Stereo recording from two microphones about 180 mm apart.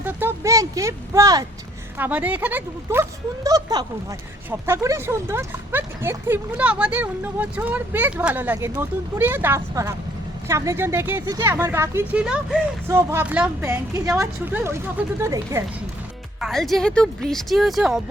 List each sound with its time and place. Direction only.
0.0 s a sound: 10° right (ahead or behind)
2.0 s speech: 10° right (ahead or behind)
12.9 s speech: 15° right (ahead or behind)
16.4 s speech: centre (ahead or behind)